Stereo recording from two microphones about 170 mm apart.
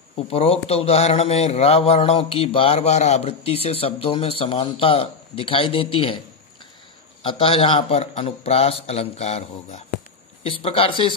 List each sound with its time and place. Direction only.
0.3 s speech: 35° left (ahead or behind)
7.2 s speech: 30° left (ahead or behind)